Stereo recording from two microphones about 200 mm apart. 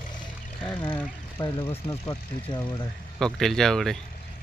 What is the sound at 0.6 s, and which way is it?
Speech, 25° left (ahead or behind).